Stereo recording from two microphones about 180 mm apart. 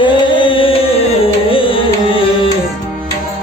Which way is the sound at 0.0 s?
25° left (ahead or behind).